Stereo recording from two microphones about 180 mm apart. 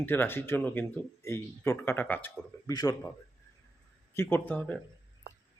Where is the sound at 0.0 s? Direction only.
10° left (ahead or behind).